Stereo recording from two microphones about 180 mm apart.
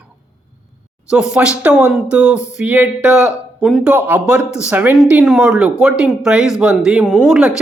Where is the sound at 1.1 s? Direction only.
5° right (ahead or behind).